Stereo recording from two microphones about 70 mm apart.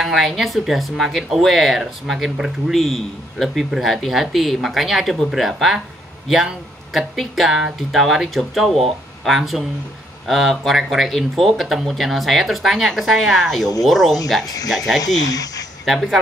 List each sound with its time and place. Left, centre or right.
0.0 s speech: centre
14.4 s speech: left
15.8 s speech: centre